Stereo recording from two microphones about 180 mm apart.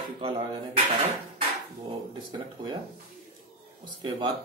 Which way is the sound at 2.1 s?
25° right (ahead or behind).